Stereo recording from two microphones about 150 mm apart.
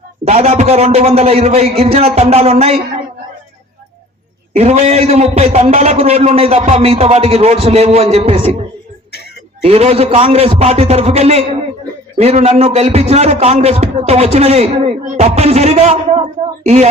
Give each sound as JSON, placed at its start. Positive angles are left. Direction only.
{"t": 0.3, "sound": "a man's voice", "side_deg": -45}
{"t": 4.5, "sound": "a man's voice", "side_deg": -45}
{"t": 9.6, "sound": "a man's voice", "side_deg": -40}